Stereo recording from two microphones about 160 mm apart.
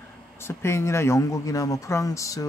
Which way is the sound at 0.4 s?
15° left (ahead or behind).